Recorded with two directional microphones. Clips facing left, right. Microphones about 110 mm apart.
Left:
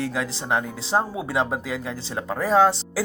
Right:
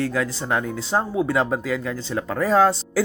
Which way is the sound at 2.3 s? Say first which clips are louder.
Right 1 dB; centre (ahead or behind).